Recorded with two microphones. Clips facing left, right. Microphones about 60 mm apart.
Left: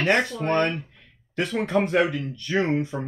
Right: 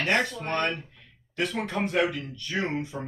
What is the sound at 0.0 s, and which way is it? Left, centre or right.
Speech, left.